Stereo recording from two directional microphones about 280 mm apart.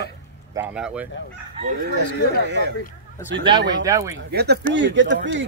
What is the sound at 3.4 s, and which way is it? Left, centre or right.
Speech, centre.